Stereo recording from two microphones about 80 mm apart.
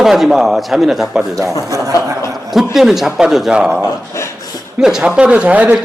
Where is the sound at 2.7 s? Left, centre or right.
Centre.